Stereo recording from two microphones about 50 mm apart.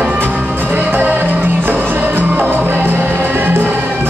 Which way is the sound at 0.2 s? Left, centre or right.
Right.